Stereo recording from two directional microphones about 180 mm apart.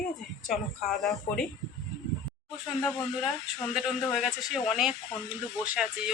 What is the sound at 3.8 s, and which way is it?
Speech, 5° right (ahead or behind).